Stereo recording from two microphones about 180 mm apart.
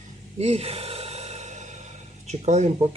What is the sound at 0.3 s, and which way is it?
Sigh, 35° right (ahead or behind).